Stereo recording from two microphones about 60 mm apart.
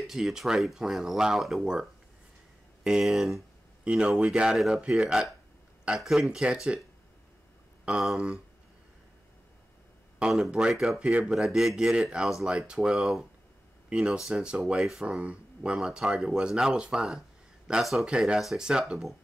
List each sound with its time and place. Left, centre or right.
0.0 s speech: centre
2.8 s speech: centre
3.8 s speech: centre
8.0 s speech: centre
10.2 s speech: centre
10.7 s speech: centre
11.0 s speech: centre
11.3 s speech: centre